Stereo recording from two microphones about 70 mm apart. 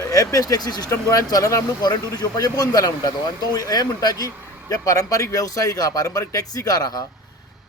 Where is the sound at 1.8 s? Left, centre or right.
Left.